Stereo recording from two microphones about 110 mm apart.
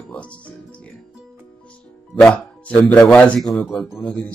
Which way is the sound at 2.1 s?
10° left (ahead or behind).